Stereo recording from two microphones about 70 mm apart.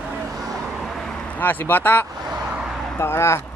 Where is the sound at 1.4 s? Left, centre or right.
Left.